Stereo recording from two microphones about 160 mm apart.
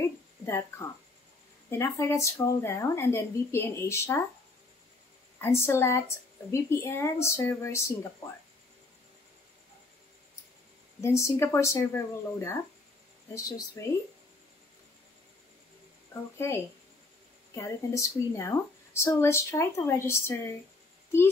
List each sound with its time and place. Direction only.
0.5 s speech: 15° left (ahead or behind)
5.4 s speech: 15° left (ahead or behind)
11.0 s speech: 15° left (ahead or behind)
16.3 s speech: 15° left (ahead or behind)